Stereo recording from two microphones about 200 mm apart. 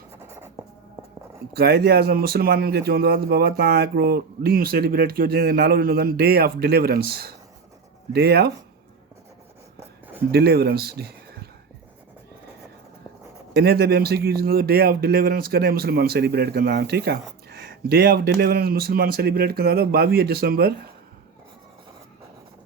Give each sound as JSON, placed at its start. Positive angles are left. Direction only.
{"t": 1.5, "sound": "speech", "side_deg": -50}
{"t": 10.3, "sound": "speech", "side_deg": -50}
{"t": 13.5, "sound": "speech", "side_deg": -50}